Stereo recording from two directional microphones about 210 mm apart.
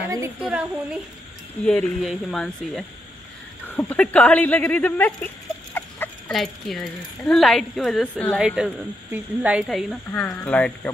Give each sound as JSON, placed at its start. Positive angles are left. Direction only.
{"t": 0.4, "sound": "a woman's voice", "side_deg": -5}